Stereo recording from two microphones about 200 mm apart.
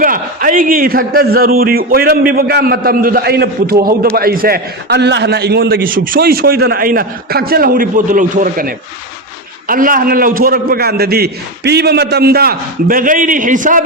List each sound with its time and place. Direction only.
0.0 s a man's voice: 45° right (ahead or behind)